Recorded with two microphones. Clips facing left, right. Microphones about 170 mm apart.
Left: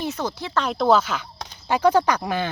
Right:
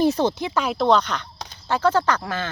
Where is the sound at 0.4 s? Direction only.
10° right (ahead or behind).